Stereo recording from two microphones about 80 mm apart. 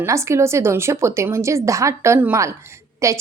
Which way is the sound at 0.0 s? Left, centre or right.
Right.